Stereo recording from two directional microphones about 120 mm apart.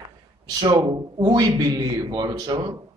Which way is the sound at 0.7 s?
35° right (ahead or behind).